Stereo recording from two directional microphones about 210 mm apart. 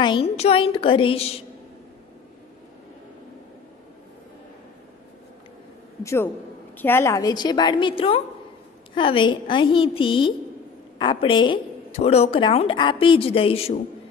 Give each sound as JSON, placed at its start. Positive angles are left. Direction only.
{"t": 0.0, "sound": "a woman's voice", "side_deg": 25}
{"t": 6.0, "sound": "a man's voice", "side_deg": 10}